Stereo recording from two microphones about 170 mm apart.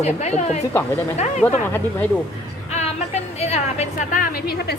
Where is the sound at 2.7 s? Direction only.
40° left (ahead or behind).